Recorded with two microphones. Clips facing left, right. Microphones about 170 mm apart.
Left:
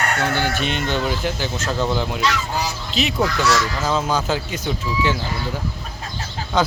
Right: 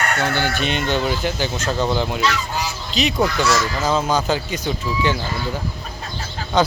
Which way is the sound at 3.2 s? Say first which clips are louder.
Even; 20° right (ahead or behind).